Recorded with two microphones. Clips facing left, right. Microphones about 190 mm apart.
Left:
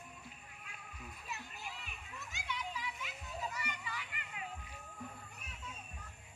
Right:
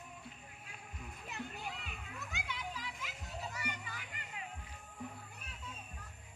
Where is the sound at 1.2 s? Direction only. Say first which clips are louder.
Right 5 dB; 55° right (ahead or behind).